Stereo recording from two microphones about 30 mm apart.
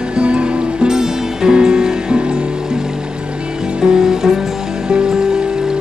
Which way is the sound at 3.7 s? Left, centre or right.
Centre.